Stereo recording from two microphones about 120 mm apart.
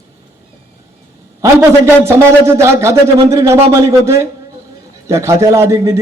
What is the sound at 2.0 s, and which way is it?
Speech, 20° right (ahead or behind).